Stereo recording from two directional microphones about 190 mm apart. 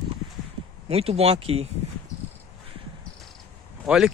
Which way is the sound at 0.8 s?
30° right (ahead or behind).